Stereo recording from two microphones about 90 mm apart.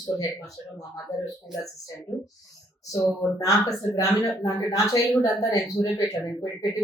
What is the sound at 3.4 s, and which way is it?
Speech, 40° left (ahead or behind).